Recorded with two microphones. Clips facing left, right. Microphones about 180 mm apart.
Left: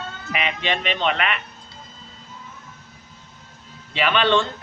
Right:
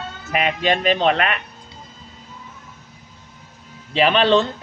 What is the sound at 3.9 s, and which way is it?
Speech, 35° right (ahead or behind).